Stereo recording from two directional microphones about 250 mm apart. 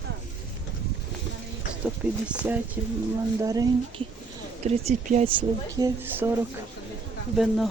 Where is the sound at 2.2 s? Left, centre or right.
Centre.